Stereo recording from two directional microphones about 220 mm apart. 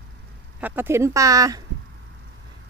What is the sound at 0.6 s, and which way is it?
Speech, 10° right (ahead or behind).